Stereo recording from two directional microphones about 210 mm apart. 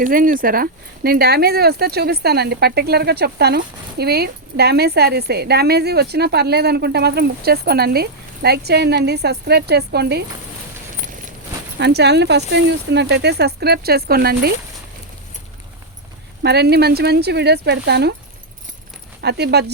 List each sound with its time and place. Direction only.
0.0 s speech: 40° right (ahead or behind)
11.0 s a sound: 35° right (ahead or behind)
11.8 s speech: 50° right (ahead or behind)
16.4 s speech: 50° right (ahead or behind)
19.2 s speech: 50° right (ahead or behind)